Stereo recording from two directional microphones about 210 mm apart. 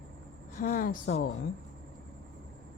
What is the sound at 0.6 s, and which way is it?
Speech, 40° left (ahead or behind).